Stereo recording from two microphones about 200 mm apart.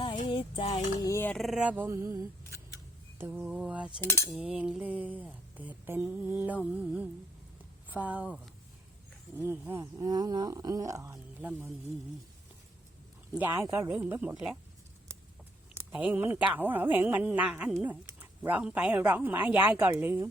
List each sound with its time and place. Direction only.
0.3 s a sound: 25° left (ahead or behind); by 3.9 s 5° right (ahead or behind)
4.0 s cutlery: 15° left (ahead or behind)
4.3 s speech: 5° right (ahead or behind)
9.4 s speech: 10° right (ahead or behind)
13.3 s speech: 10° right (ahead or behind)
15.7 s speech: 10° right (ahead or behind)